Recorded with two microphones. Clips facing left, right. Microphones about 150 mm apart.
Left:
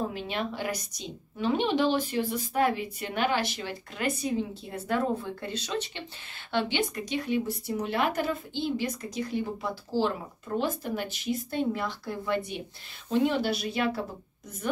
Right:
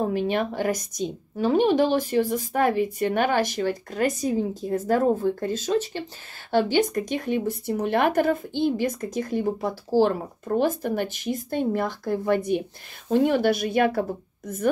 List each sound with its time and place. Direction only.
0.0 s a woman's voice: 50° right (ahead or behind)